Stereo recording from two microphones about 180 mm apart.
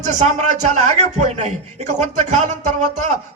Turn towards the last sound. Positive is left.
turn(degrees=-40)  # may be behind; listen again after turning